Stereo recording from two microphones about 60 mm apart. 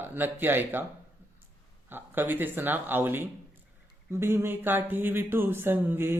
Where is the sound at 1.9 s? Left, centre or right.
Right.